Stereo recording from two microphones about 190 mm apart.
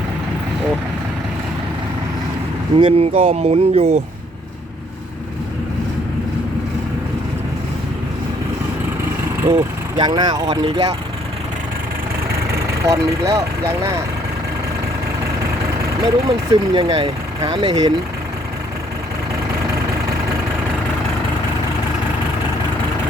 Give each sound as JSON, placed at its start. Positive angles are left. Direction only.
{"t": 2.7, "sound": "speech", "side_deg": -30}
{"t": 9.4, "sound": "speech", "side_deg": -20}
{"t": 12.8, "sound": "speech", "side_deg": -15}
{"t": 16.2, "sound": "speech", "side_deg": -25}